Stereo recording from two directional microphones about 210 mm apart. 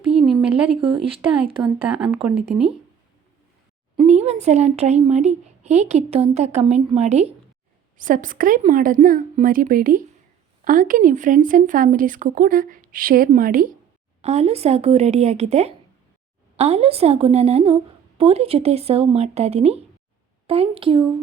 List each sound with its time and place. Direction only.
0.1 s a sound: centre (ahead or behind)
1.6 s speech: 5° right (ahead or behind)
3.9 s speech: 30° right (ahead or behind)
14.2 s speech: 30° right (ahead or behind)